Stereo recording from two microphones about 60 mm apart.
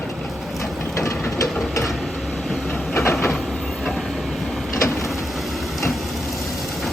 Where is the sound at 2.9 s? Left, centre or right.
Left.